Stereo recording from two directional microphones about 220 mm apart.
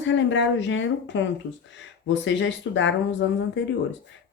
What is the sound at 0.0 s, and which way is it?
Speech, 55° left (ahead or behind).